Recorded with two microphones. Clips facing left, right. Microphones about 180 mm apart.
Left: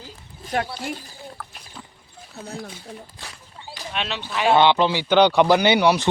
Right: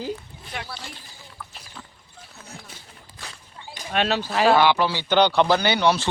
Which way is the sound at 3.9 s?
40° right (ahead or behind).